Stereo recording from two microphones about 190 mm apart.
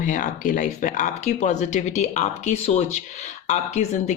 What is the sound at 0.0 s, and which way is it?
Speech, 45° left (ahead or behind).